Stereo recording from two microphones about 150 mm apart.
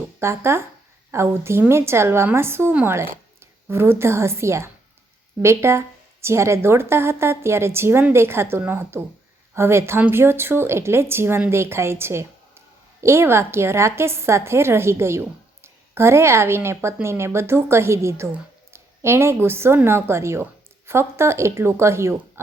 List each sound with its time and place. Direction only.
0.2 s speech: 15° right (ahead or behind)